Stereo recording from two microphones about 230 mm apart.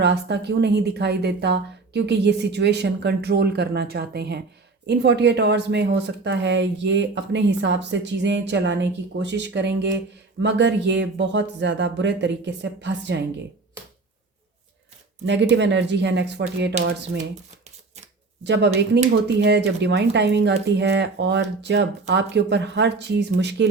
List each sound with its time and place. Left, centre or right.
0.0 s speech: right
15.3 s speech: right
18.4 s speech: right